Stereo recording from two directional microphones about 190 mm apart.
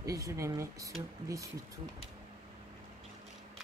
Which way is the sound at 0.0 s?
15° right (ahead or behind).